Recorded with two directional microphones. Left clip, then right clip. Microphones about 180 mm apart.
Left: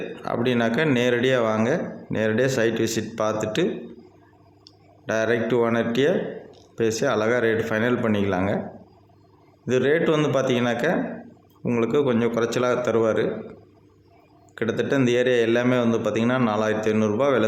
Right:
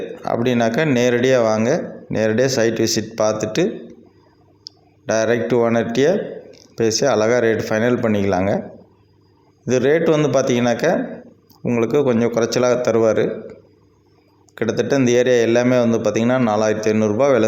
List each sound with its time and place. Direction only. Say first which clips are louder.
0.2 s speech: right 5 dB; 25° right (ahead or behind)
5.0 s speech: right 5 dB; 25° right (ahead or behind)
9.6 s speech: right 5 dB; 25° right (ahead or behind)
14.5 s speech: right 5 dB; 25° right (ahead or behind)